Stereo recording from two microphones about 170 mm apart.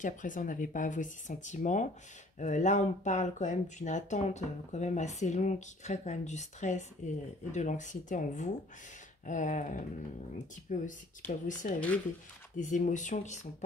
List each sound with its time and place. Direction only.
0.0 s speech: 50° left (ahead or behind)